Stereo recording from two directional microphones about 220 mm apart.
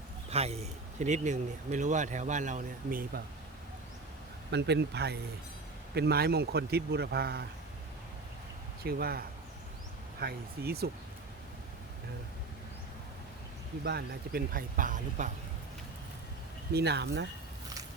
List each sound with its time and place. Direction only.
0.3 s speech: 30° right (ahead or behind)
4.5 s speech: 50° right (ahead or behind)
8.8 s speech: 45° right (ahead or behind)
13.8 s speech: 45° right (ahead or behind)
16.7 s speech: 50° right (ahead or behind)